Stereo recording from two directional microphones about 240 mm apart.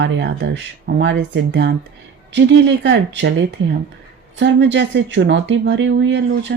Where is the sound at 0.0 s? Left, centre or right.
Right.